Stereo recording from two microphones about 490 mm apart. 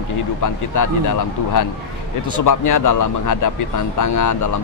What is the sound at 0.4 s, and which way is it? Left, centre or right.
Speech, left.